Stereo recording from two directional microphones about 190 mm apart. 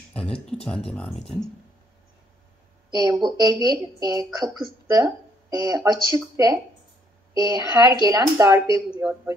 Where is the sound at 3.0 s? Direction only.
20° right (ahead or behind).